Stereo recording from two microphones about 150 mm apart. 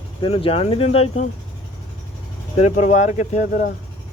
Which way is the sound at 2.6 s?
50° left (ahead or behind).